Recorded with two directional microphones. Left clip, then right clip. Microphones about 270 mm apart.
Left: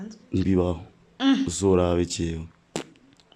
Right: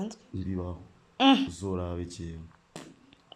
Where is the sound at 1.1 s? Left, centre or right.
Centre.